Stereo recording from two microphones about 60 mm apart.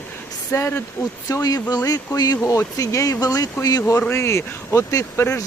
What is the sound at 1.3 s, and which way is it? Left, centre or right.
Speech, left.